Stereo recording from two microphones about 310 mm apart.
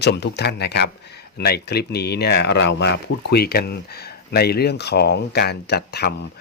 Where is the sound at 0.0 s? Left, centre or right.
Left.